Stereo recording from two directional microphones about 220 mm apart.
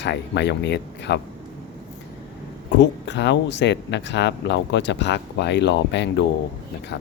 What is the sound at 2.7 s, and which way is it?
Speech, 55° left (ahead or behind).